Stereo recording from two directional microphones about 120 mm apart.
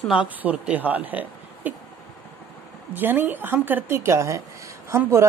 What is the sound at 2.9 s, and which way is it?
A woman's voice, 15° right (ahead or behind).